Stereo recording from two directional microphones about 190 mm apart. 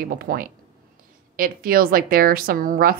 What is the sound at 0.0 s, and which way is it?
A woman's voice, 50° right (ahead or behind).